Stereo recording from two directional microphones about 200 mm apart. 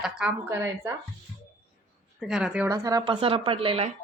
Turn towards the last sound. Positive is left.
turn(degrees=-30)  # may be behind; listen again after turning